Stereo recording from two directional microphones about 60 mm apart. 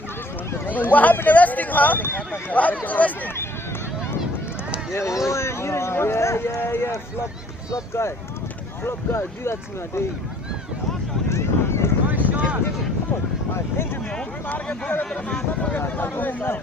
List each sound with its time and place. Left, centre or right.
0.5 s speech: left
4.9 s speech: left
8.0 s speech: left
11.3 s a sound: left
12.0 s a sound: right
13.5 s speech: left
14.0 s speech: centre
14.4 s speech: left